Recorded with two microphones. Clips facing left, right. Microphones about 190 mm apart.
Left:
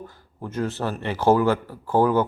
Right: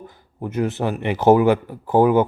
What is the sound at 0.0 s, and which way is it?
A man's voice, 15° right (ahead or behind).